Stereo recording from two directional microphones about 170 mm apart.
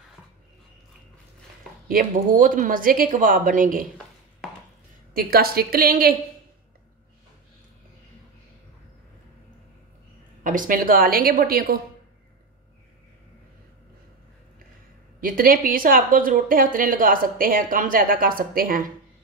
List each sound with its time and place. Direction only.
1.9 s speech: 55° right (ahead or behind)
5.1 s a woman's voice: 60° right (ahead or behind)
10.4 s a woman's voice: 50° right (ahead or behind)
15.1 s a woman's voice: 55° right (ahead or behind)